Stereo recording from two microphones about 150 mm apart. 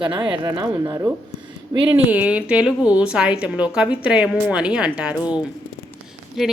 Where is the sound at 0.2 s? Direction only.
30° right (ahead or behind).